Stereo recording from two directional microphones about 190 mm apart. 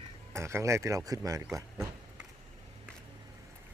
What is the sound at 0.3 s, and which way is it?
Speech, 15° right (ahead or behind).